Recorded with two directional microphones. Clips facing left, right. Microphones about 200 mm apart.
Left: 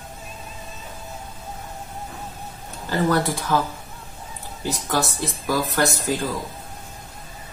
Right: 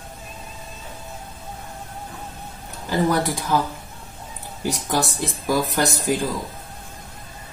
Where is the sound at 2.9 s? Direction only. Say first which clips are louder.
Even; 15° right (ahead or behind).